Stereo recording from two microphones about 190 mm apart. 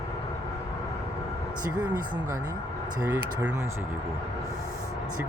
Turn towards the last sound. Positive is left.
turn(degrees=-20)  # may be behind; listen again after turning